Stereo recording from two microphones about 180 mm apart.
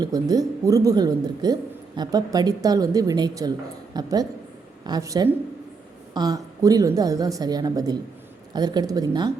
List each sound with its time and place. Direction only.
0.0 s a woman's voice: 20° right (ahead or behind)